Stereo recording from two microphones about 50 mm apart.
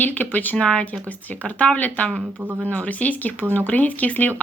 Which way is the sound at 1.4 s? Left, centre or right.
Left.